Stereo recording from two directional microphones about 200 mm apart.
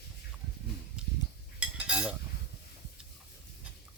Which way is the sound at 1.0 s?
5° right (ahead or behind).